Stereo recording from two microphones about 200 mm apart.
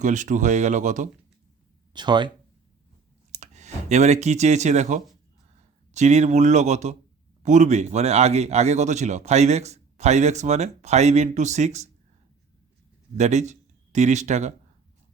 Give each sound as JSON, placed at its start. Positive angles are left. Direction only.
{"t": 0.0, "sound": "speech", "side_deg": -40}
{"t": 1.9, "sound": "speech", "side_deg": -20}
{"t": 3.3, "sound": "speech", "side_deg": -35}
{"t": 13.1, "sound": "speech", "side_deg": -35}